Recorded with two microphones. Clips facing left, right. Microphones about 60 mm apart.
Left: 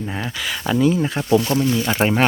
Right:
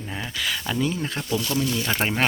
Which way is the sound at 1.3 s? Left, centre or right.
Left.